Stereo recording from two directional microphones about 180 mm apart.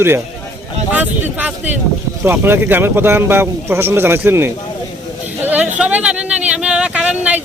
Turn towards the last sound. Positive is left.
turn(degrees=-5)  # may be behind; listen again after turning